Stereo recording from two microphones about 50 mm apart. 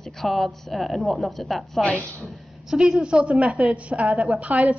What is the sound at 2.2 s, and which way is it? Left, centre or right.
A woman's voice, centre.